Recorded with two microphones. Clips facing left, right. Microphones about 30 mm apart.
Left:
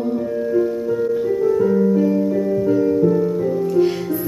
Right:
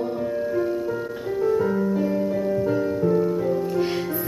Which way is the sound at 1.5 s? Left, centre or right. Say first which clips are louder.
Left 5 dB; centre.